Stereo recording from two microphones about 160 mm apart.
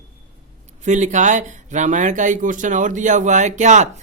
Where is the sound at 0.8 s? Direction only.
50° right (ahead or behind).